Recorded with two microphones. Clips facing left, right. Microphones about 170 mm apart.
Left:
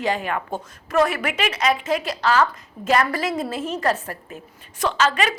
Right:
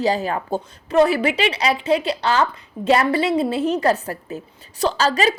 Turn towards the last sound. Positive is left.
turn(degrees=-35)  # may be behind; listen again after turning